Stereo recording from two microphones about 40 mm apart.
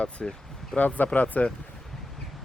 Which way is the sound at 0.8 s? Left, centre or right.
Left.